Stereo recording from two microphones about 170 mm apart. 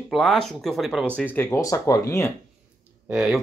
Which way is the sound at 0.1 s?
Centre (ahead or behind).